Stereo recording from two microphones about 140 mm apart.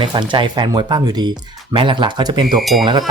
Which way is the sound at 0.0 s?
35° right (ahead or behind).